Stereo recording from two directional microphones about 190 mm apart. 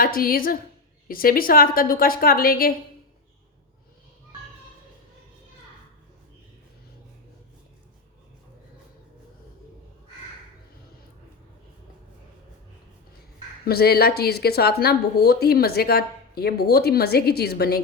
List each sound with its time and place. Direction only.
0.0 s a woman's voice: 50° left (ahead or behind)
13.7 s speech: 55° left (ahead or behind)